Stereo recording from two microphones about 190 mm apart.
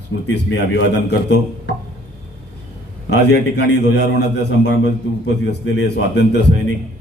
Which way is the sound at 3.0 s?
65° left (ahead or behind).